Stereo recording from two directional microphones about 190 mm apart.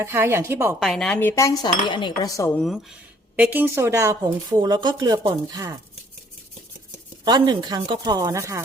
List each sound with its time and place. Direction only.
0.0 s a woman's voice: 15° right (ahead or behind)
0.9 s cutlery: 5° left (ahead or behind); by 2.5 s 20° left (ahead or behind)
2.6 s speech: centre (ahead or behind); by 5.7 s 20° right (ahead or behind)
7.3 s speech: 20° right (ahead or behind)